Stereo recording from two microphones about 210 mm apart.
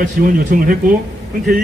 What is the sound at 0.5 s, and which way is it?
Speech, 45° right (ahead or behind).